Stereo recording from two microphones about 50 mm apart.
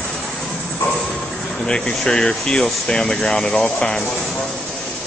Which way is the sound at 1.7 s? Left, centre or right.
Centre.